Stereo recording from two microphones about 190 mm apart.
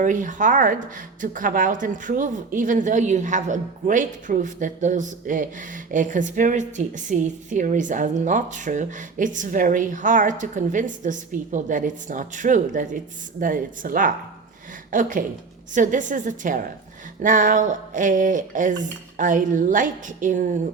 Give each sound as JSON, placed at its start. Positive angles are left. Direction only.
{"t": 0.0, "sound": "a woman's voice", "side_deg": -40}